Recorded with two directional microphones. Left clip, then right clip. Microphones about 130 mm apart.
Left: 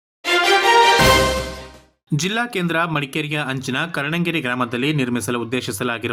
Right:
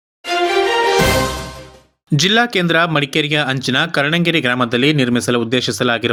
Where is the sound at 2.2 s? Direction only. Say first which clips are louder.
Right 8 dB; 15° right (ahead or behind).